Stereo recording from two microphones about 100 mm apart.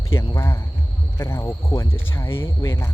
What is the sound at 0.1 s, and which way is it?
Speech, 25° left (ahead or behind).